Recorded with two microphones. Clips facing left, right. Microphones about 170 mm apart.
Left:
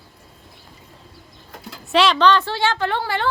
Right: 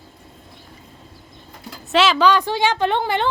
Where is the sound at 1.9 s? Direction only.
Centre (ahead or behind); by 3.2 s 20° right (ahead or behind).